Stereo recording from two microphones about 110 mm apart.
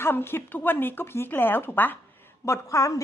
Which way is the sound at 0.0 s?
20° left (ahead or behind).